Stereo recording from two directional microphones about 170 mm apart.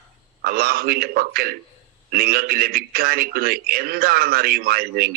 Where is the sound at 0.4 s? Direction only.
60° right (ahead or behind).